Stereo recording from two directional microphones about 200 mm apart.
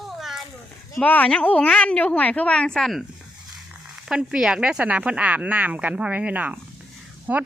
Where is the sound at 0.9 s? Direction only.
5° left (ahead or behind).